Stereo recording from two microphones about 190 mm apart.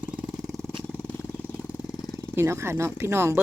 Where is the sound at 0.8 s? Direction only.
10° left (ahead or behind).